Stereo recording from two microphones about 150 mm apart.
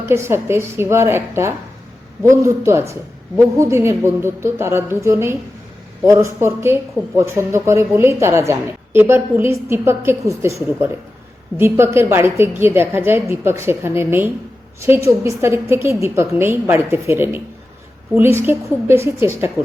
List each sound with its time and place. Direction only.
0.1 s a woman's voice: 15° right (ahead or behind)